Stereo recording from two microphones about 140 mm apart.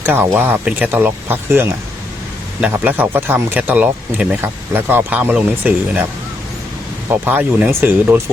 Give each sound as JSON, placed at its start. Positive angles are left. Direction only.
{"t": 0.0, "sound": "speech", "side_deg": -15}
{"t": 7.1, "sound": "speech", "side_deg": -15}